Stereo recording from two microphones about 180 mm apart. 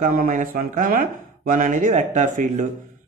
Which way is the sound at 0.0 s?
50° right (ahead or behind).